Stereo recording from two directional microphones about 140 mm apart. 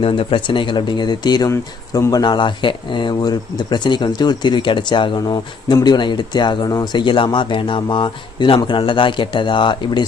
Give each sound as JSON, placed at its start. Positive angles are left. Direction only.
{"t": 0.0, "sound": "speech", "side_deg": 40}